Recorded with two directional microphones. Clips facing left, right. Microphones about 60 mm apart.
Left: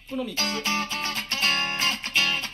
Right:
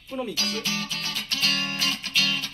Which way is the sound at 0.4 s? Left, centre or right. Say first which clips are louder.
Left 3 dB; left.